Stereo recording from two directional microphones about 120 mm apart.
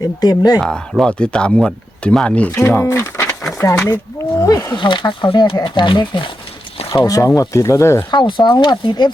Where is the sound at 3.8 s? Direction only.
15° left (ahead or behind).